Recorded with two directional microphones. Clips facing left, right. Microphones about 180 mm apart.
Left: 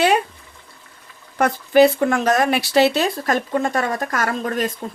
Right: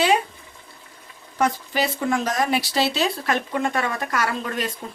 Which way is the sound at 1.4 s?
60° left (ahead or behind).